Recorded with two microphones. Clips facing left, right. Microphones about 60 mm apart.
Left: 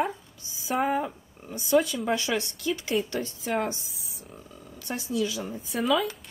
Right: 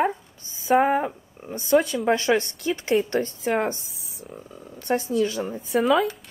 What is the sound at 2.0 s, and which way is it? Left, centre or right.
Speech, right.